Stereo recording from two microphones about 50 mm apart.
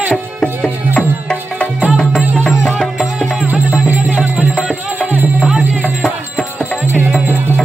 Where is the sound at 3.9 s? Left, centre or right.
Right.